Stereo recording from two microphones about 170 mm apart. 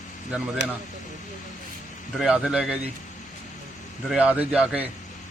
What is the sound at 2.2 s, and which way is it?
Speech, 5° right (ahead or behind).